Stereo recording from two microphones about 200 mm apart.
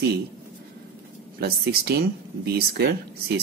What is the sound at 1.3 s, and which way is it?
Speech, 50° right (ahead or behind).